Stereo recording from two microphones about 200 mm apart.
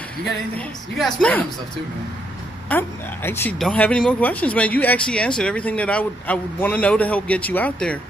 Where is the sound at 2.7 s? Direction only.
10° left (ahead or behind).